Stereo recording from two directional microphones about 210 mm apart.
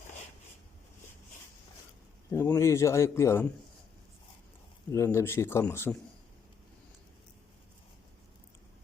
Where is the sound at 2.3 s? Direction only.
10° left (ahead or behind).